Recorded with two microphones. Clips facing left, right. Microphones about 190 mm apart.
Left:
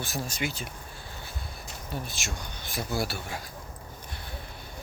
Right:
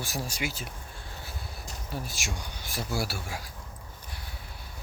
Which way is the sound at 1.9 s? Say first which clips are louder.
Even; 10° right (ahead or behind).